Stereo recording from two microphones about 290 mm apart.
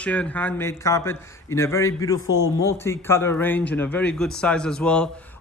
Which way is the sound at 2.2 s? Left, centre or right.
Left.